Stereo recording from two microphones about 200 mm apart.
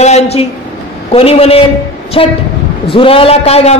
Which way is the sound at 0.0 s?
30° left (ahead or behind).